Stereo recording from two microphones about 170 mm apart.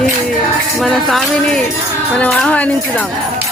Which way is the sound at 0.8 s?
Centre (ahead or behind).